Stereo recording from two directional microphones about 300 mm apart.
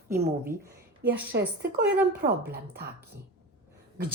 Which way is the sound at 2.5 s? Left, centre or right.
Right.